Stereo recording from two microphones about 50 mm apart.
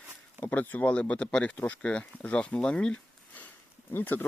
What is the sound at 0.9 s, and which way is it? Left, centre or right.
Speech, left.